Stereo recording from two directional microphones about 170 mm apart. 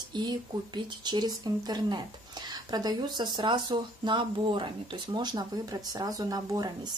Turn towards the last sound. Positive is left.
turn(degrees=-20)  # may be behind; listen again after turning